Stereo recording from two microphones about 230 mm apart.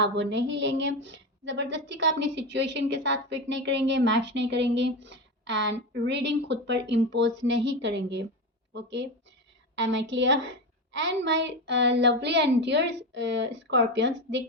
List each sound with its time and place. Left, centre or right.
0.0 s a woman's voice: right